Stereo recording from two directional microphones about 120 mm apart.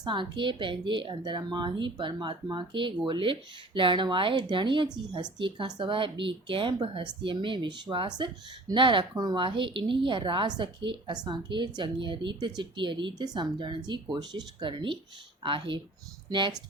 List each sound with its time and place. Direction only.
0.0 s a woman's voice: 40° right (ahead or behind)